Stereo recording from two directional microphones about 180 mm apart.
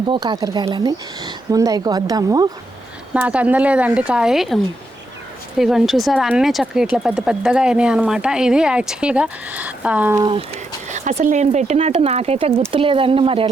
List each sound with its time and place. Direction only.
0.1 s speech: 25° right (ahead or behind)
3.2 s speech: 10° right (ahead or behind)
10.2 s speech: 30° right (ahead or behind)